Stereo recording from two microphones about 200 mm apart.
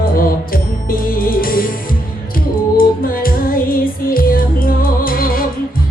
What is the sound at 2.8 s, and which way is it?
Music, 45° left (ahead or behind).